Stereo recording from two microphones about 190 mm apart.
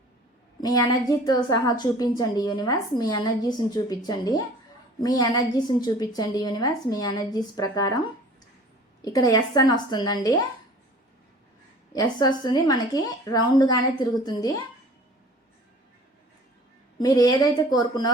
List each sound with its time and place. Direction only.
0.6 s a woman's voice: 20° left (ahead or behind)
9.0 s a woman's voice: 20° left (ahead or behind)
11.9 s a woman's voice: 20° left (ahead or behind)
17.0 s a woman's voice: 20° left (ahead or behind)